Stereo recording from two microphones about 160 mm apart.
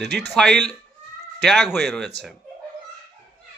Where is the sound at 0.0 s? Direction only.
90° right.